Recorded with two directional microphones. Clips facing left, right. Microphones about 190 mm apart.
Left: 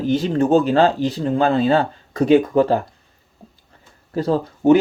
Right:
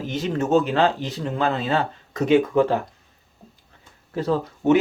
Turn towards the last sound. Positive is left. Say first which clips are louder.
# left 4 dB
turn(degrees=35)  # may be behind; listen again after turning